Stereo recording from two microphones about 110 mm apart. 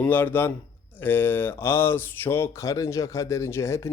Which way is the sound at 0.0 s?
15° left (ahead or behind).